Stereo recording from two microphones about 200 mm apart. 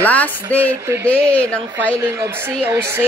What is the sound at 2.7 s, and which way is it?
Speech, 10° right (ahead or behind).